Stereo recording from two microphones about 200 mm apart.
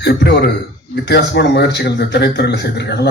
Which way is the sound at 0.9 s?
55° left (ahead or behind).